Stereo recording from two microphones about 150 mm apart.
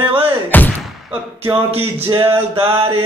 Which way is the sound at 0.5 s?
10° left (ahead or behind).